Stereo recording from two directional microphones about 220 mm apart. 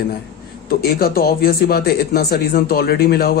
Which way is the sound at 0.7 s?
45° left (ahead or behind).